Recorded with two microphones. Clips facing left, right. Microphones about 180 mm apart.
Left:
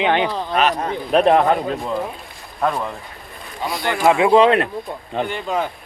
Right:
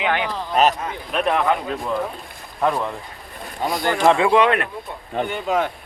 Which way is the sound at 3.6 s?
45° right (ahead or behind).